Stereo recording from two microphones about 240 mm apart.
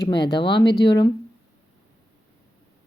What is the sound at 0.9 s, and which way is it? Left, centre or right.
Speech, centre.